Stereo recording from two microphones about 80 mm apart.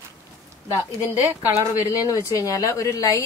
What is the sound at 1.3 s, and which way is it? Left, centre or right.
Speech, right.